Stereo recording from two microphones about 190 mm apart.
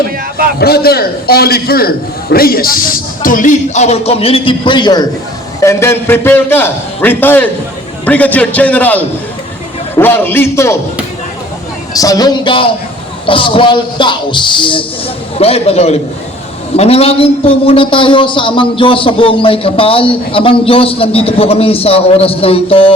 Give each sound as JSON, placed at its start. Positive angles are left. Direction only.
{"t": 0.6, "sound": "a man's voice", "side_deg": 55}
{"t": 11.9, "sound": "a man's voice", "side_deg": 20}